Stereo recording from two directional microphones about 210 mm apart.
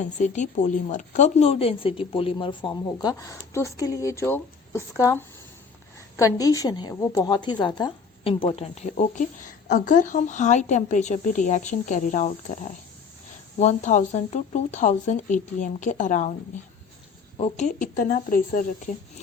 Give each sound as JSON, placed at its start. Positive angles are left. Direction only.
{"t": 0.0, "sound": "a woman's voice", "side_deg": 35}
{"t": 17.3, "sound": "a woman's voice", "side_deg": 30}